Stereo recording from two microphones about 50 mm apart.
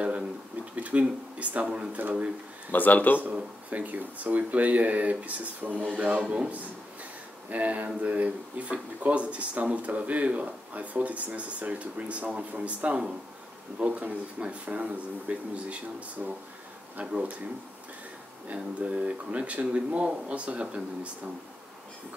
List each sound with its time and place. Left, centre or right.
0.8 s speech: right
2.7 s speech: left
3.3 s speech: right
6.2 s speech: centre
7.4 s speech: right
18.5 s speech: right